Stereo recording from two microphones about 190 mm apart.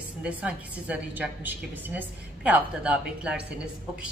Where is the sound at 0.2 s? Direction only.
5° right (ahead or behind).